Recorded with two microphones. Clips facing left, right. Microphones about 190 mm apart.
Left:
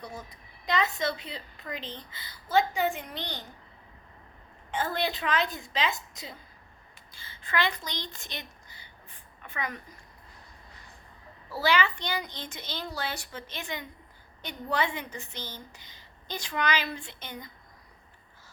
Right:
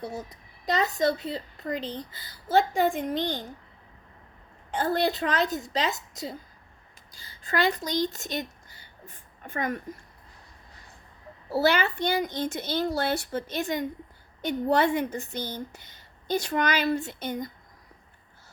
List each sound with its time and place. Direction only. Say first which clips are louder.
0.2 s a woman's voice: right 6 dB; 40° right (ahead or behind)
4.7 s a woman's voice: right 5 dB; 40° right (ahead or behind)
11.6 s a woman's voice: right 3 dB; 45° right (ahead or behind)